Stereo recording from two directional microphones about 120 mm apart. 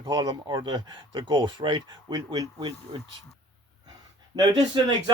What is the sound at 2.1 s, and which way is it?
Speech, 35° right (ahead or behind).